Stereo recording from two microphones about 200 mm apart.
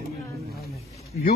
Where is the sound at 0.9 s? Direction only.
Centre (ahead or behind).